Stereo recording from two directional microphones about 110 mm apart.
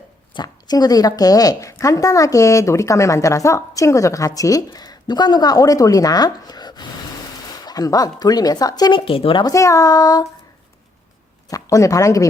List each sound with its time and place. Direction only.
0.3 s a woman's voice: 35° left (ahead or behind); by 9.4 s 55° left (ahead or behind)
9.4 s a woman's voice: 30° left (ahead or behind)
11.4 s speech: 30° left (ahead or behind)